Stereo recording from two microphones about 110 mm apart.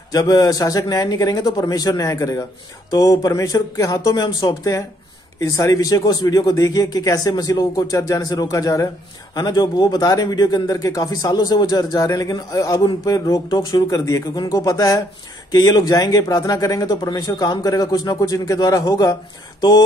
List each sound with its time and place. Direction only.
0.1 s speech: 35° left (ahead or behind)